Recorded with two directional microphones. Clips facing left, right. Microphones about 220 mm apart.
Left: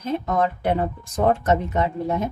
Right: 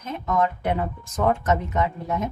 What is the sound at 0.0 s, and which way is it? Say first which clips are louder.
A woman's voice: left 2 dB; 30° left (ahead or behind).